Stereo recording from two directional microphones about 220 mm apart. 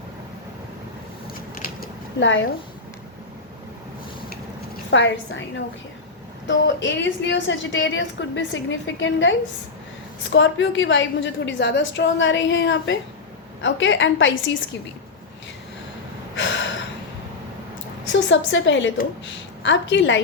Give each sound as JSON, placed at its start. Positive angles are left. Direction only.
{"t": 1.6, "sound": "a sound", "side_deg": 40}
{"t": 2.2, "sound": "a woman's voice", "side_deg": 60}
{"t": 4.9, "sound": "a woman's voice", "side_deg": 55}
{"t": 16.3, "sound": "gasp", "side_deg": 55}
{"t": 18.1, "sound": "a woman's voice", "side_deg": 55}